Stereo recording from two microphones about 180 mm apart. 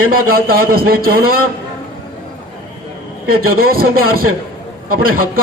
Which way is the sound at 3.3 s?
55° right (ahead or behind).